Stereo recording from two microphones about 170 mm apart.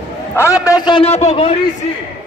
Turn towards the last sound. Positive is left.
turn(degrees=40)  # may be behind; listen again after turning